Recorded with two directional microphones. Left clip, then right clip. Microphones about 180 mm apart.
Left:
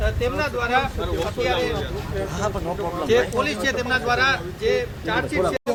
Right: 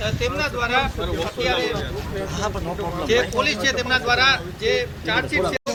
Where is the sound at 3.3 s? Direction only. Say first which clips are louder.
Right 2 dB; 55° left (ahead or behind); by 5.6 s 35° left (ahead or behind).